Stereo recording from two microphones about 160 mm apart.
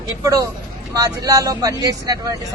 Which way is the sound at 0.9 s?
20° right (ahead or behind).